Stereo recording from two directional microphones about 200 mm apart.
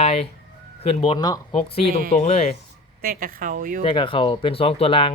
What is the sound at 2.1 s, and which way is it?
Speech, 35° left (ahead or behind).